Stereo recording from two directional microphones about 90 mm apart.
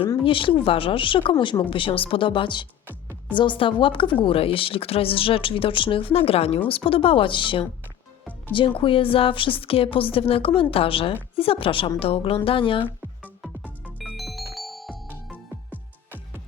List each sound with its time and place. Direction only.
0.3 s a woman's voice: 70° left (ahead or behind)
1.7 s a woman's voice: 80° left
11.9 s a woman's voice: 90° left
12.5 s speech: 80° left
14.0 s music: centre (ahead or behind)